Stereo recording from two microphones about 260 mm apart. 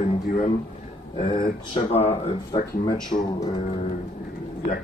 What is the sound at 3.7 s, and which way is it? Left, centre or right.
Speech, left.